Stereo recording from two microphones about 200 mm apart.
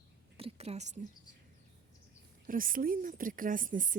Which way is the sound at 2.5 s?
45° right (ahead or behind).